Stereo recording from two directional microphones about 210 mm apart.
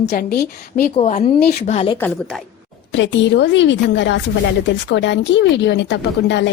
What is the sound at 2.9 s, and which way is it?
A woman's voice, 60° left (ahead or behind).